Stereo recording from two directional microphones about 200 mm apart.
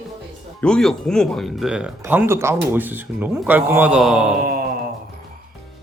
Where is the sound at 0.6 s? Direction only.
5° left (ahead or behind).